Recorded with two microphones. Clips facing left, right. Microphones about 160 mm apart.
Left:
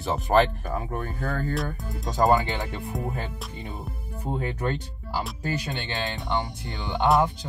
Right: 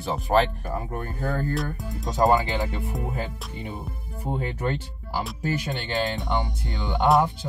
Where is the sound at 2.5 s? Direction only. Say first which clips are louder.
Right 2 dB; centre (ahead or behind).